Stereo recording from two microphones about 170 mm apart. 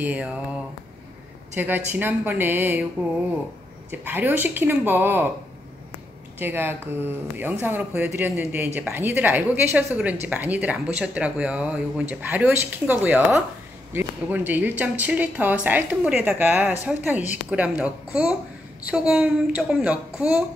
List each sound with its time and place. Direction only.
0.0 s speech: 10° right (ahead or behind)
3.9 s speech: 10° right (ahead or behind)
6.4 s speech: 15° right (ahead or behind)